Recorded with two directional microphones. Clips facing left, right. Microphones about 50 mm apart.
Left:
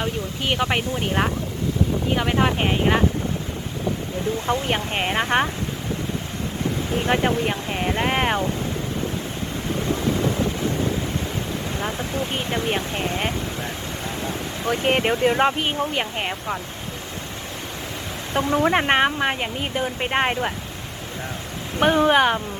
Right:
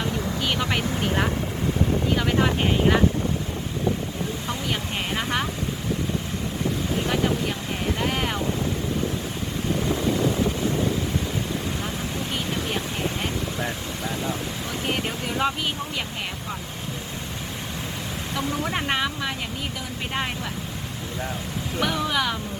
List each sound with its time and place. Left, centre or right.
0.0 s speech: left
4.4 s speech: left
7.1 s speech: left
11.8 s speech: left
14.6 s speech: left
18.5 s speech: left
21.8 s speech: left